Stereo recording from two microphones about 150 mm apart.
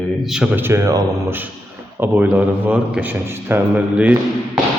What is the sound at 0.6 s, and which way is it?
A man's voice, 15° right (ahead or behind).